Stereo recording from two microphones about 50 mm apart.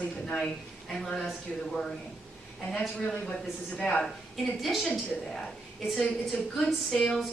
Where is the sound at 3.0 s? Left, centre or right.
Centre.